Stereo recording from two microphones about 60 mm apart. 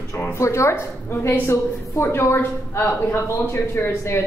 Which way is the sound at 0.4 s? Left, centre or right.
Left.